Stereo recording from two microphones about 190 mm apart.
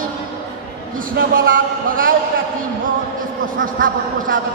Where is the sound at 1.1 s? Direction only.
50° right (ahead or behind).